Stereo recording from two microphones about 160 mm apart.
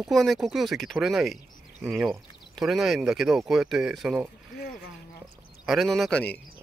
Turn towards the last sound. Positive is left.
turn(degrees=5)  # may be behind; listen again after turning